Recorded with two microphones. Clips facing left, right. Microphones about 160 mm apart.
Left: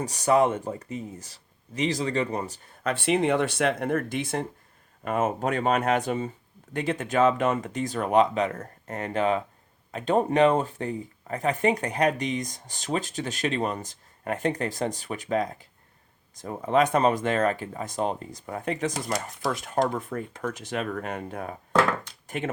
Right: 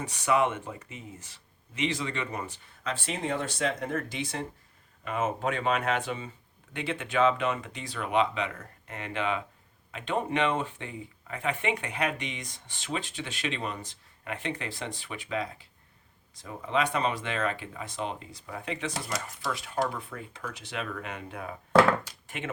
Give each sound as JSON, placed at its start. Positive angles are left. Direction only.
{"t": 0.0, "sound": "speech", "side_deg": 40}
{"t": 2.8, "sound": "speech", "side_deg": 65}